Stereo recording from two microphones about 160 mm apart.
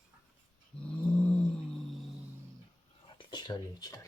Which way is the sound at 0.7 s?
5° left (ahead or behind).